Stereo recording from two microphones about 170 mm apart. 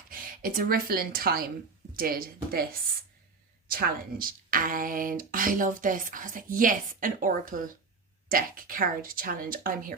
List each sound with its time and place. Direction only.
0.1 s speech: 55° right (ahead or behind)
3.7 s speech: 55° right (ahead or behind)